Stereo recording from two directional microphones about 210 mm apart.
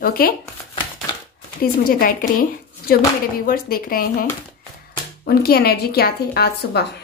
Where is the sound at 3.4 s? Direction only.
45° left (ahead or behind).